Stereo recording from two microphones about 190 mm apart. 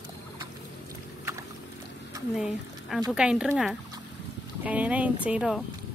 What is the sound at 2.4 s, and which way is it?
A woman's voice, 5° right (ahead or behind).